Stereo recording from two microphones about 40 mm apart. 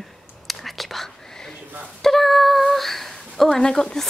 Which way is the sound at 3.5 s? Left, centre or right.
Centre.